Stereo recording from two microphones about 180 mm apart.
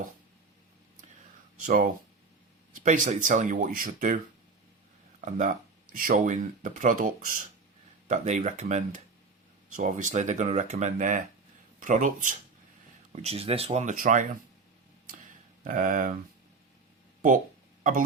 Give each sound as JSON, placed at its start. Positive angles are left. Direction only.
{"t": 1.6, "sound": "speech", "side_deg": -50}
{"t": 5.2, "sound": "speech", "side_deg": -45}
{"t": 13.1, "sound": "speech", "side_deg": -35}
{"t": 15.6, "sound": "speech", "side_deg": -50}